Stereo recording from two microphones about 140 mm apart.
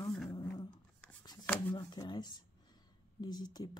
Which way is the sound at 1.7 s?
30° left (ahead or behind).